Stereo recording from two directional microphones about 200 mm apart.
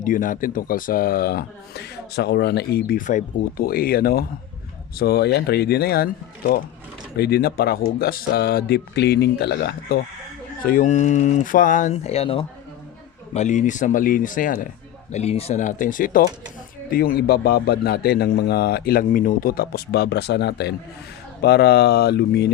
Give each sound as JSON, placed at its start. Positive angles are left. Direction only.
{"t": 0.0, "sound": "speech", "side_deg": 40}
{"t": 10.6, "sound": "speech", "side_deg": 45}